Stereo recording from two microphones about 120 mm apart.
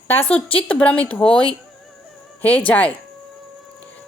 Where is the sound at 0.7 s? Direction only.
10° left (ahead or behind).